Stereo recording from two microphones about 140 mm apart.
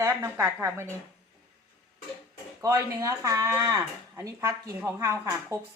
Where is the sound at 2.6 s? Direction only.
20° right (ahead or behind).